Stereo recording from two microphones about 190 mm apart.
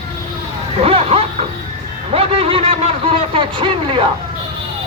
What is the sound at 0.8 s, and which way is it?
Speech, 30° right (ahead or behind).